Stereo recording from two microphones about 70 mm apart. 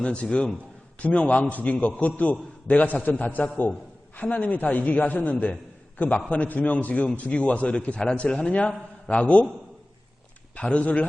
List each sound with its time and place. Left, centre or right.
0.0 s a man's voice: centre
10.5 s a man's voice: centre